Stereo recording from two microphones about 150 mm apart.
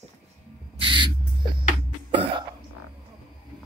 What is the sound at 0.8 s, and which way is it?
Owl, 35° right (ahead or behind).